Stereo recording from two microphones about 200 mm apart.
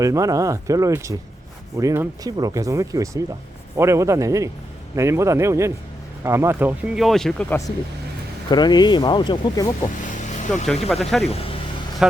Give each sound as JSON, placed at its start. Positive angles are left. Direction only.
{"t": 0.0, "sound": "speech", "side_deg": -15}
{"t": 8.4, "sound": "speech", "side_deg": 20}
{"t": 9.8, "sound": "vehicle", "side_deg": 35}
{"t": 10.8, "sound": "speech", "side_deg": 0}
{"t": 11.3, "sound": "speech", "side_deg": 30}